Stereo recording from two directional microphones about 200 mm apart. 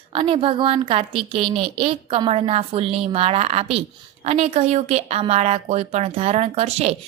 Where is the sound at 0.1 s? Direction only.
25° right (ahead or behind).